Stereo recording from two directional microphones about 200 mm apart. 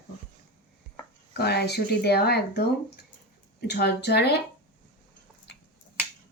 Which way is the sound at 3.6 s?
55° left (ahead or behind).